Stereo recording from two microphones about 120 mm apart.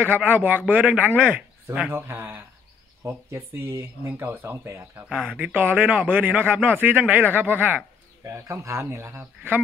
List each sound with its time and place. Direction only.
0.0 s speech: 15° right (ahead or behind)
5.1 s speech: 10° right (ahead or behind)